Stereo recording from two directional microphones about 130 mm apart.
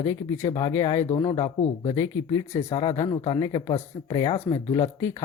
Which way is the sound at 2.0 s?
20° left (ahead or behind).